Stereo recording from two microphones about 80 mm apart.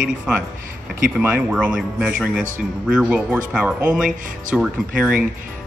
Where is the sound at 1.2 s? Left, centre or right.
Centre.